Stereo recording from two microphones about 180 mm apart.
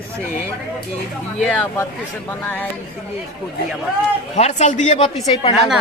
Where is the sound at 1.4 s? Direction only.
10° left (ahead or behind).